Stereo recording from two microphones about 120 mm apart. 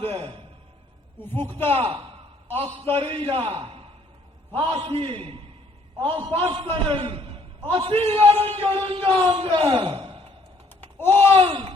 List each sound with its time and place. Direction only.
0.0 s a sound: 50° right (ahead or behind)
1.2 s a man's voice: 20° left (ahead or behind)
1.8 s a man's voice: 50° right (ahead or behind)
10.9 s speech: 20° left (ahead or behind)
11.3 s a man's voice: 50° right (ahead or behind)